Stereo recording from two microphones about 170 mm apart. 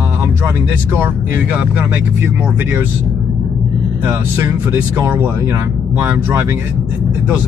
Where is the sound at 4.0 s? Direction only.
15° right (ahead or behind).